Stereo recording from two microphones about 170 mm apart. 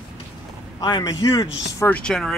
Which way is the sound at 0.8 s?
25° left (ahead or behind).